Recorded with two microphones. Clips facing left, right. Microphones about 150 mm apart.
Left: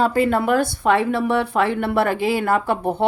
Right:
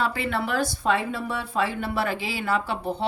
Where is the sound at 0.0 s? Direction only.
45° left (ahead or behind).